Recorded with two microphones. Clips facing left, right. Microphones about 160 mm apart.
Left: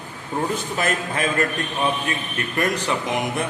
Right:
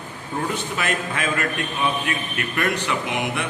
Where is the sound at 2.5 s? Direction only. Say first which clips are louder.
Left 1 dB; 40° left (ahead or behind).